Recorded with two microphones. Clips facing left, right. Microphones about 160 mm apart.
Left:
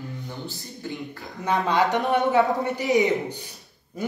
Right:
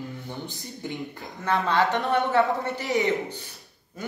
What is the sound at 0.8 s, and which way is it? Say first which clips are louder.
Speech: even; 20° right (ahead or behind).